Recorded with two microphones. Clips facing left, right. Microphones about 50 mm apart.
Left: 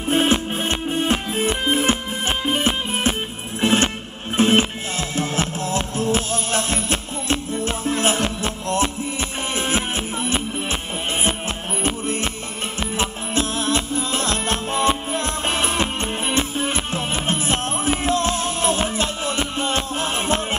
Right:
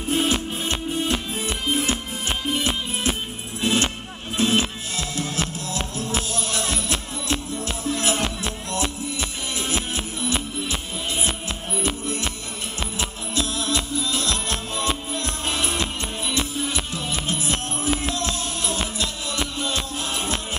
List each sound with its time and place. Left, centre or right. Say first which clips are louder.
0.1 s music: left 4 dB; left
9.6 s music: left 4 dB; left
13.3 s music: left 3 dB; left